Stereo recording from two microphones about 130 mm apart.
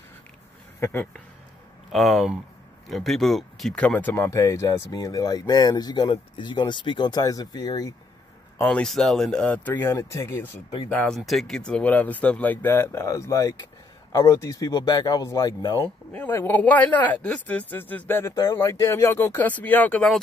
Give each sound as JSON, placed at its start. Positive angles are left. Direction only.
{"t": 0.7, "sound": "speech", "side_deg": 20}
{"t": 1.9, "sound": "speech", "side_deg": 0}
{"t": 8.5, "sound": "speech", "side_deg": 10}
{"t": 10.9, "sound": "speech", "side_deg": 5}
{"t": 16.1, "sound": "speech", "side_deg": 15}